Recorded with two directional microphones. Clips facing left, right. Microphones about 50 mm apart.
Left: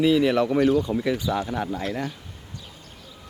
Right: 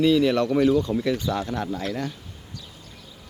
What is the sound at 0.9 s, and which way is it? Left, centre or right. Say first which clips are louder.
Speech: even; centre.